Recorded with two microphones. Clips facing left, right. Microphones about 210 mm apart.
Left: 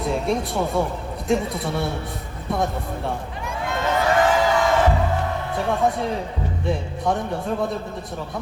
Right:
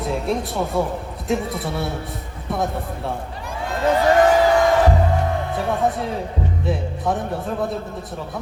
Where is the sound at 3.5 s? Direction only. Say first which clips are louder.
Right 4 dB; 35° right (ahead or behind).